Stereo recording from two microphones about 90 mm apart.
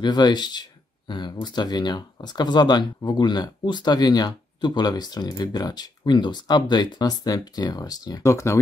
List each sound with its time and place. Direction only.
0.0 s speech: 55° left (ahead or behind); by 8.5 s 35° left (ahead or behind)